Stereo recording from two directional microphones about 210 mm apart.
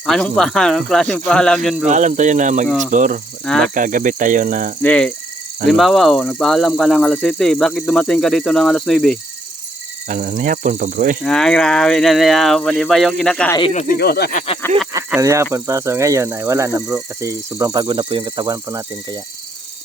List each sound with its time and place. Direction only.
0.0 s speech: centre (ahead or behind)
1.9 s speech: 35° right (ahead or behind)
2.6 s speech: centre (ahead or behind)
2.9 s speech: 35° right (ahead or behind)
4.8 s cricket: 5° left (ahead or behind)
5.6 s speech: centre (ahead or behind)
10.1 s speech: 40° right (ahead or behind)
11.2 s speech: 5° left (ahead or behind)
13.8 s speech: 50° left (ahead or behind); by 14.6 s 30° left (ahead or behind)
14.9 s speech: 15° right (ahead or behind)